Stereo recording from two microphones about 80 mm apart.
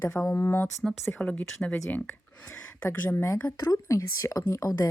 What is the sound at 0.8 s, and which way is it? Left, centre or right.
Speech, centre.